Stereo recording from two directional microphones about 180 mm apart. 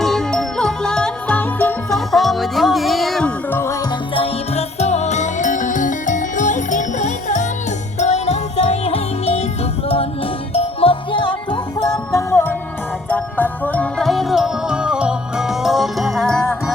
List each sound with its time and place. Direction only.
0.0 s music: centre (ahead or behind)
4.1 s music: 35° left (ahead or behind)
10.5 s music: 35° left (ahead or behind); by 16.7 s centre (ahead or behind)